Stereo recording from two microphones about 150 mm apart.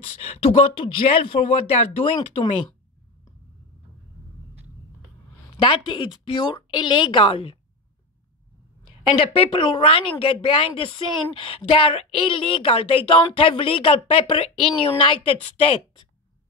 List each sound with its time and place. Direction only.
0.2 s speech: 45° left (ahead or behind)
5.7 s speech: 35° left (ahead or behind)
9.1 s speech: 40° left (ahead or behind)